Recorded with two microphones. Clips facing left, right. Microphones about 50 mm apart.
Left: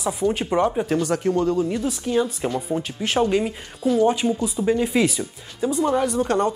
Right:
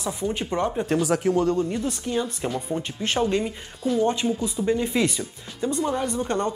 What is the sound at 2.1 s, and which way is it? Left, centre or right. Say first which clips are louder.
Speech: left 6 dB; centre.